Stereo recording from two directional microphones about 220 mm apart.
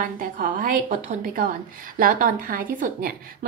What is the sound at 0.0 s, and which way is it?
A woman's voice, 40° right (ahead or behind).